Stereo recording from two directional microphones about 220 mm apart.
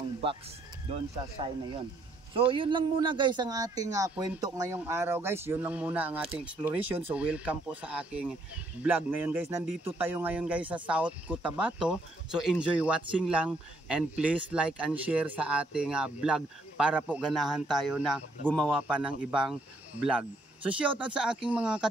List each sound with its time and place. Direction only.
0.8 s speech: 25° right (ahead or behind); by 19.1 s 5° right (ahead or behind)
21.0 s speech: 5° right (ahead or behind)